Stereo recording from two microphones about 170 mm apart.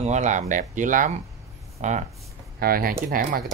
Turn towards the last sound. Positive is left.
turn(degrees=-55)  # may be behind; listen again after turning